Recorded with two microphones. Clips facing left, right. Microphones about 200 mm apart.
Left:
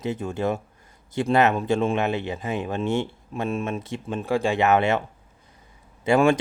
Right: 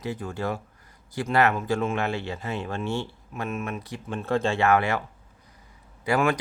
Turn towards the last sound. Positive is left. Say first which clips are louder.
# left 5 dB
turn(degrees=25)  # may be behind; listen again after turning